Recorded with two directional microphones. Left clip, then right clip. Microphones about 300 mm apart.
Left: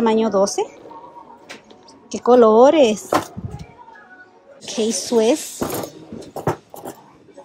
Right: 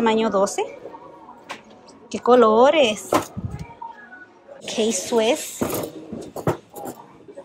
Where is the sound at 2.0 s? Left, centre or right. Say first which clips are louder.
Left 3 dB; centre.